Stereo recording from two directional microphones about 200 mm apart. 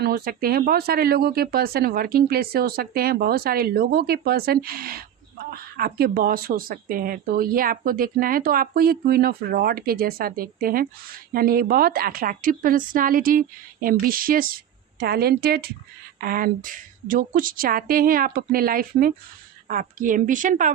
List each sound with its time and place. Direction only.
0.0 s a woman's voice: 50° right (ahead or behind)